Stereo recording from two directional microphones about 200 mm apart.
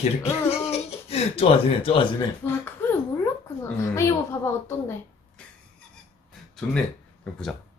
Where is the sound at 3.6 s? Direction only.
15° left (ahead or behind).